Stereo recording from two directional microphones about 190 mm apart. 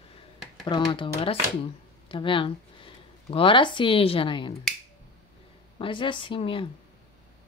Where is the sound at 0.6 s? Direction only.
25° left (ahead or behind).